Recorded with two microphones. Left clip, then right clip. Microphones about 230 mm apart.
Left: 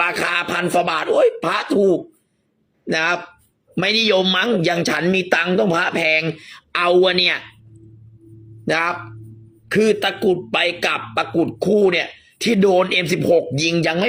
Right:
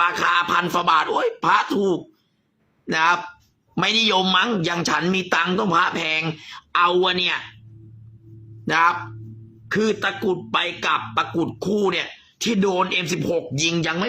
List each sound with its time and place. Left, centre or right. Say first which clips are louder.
0.0 s speech: right 1 dB; centre
6.7 s speech: left 3 dB; centre
8.7 s speech: right 2 dB; centre